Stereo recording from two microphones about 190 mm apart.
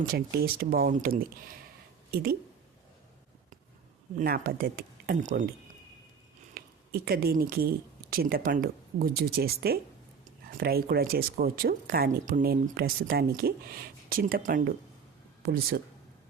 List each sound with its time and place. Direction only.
0.1 s speech: 50° right (ahead or behind)
4.2 s speech: 50° right (ahead or behind)
6.6 s a sound: 50° right (ahead or behind)
7.0 s speech: 55° right (ahead or behind)